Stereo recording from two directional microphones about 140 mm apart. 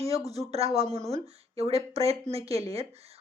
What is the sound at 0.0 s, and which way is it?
A woman's voice, 50° right (ahead or behind).